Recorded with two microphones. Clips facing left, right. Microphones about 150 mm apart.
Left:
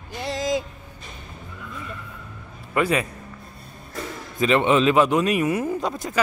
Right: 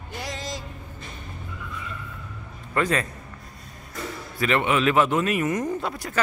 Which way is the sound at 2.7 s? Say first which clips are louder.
Left 2 dB; 10° left (ahead or behind).